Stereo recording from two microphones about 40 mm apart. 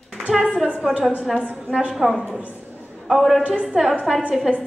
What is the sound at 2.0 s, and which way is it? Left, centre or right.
A woman's voice, centre.